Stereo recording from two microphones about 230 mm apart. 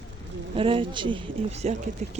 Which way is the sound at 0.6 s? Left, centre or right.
Right.